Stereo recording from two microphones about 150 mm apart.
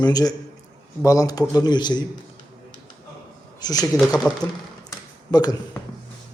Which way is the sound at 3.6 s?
25° left (ahead or behind).